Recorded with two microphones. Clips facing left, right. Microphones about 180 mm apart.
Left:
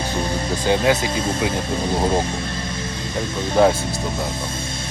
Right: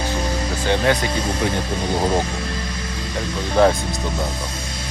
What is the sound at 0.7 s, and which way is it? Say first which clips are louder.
Speech: left 1 dB; 20° left (ahead or behind).